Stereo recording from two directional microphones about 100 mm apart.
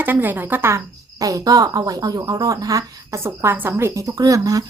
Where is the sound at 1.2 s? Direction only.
35° right (ahead or behind).